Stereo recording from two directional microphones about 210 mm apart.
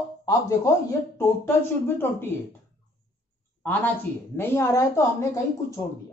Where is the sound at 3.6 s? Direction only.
10° left (ahead or behind).